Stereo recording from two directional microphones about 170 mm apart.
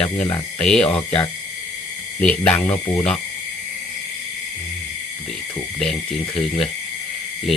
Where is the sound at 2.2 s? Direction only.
5° left (ahead or behind).